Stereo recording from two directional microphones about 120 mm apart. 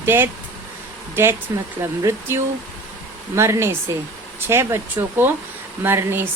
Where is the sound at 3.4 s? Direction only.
20° right (ahead or behind).